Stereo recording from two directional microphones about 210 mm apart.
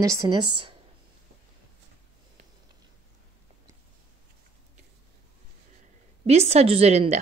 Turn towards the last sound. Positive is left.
turn(degrees=-30)  # may be behind; listen again after turning